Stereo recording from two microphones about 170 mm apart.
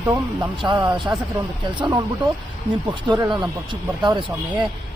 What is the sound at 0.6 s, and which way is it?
Speech, 25° right (ahead or behind).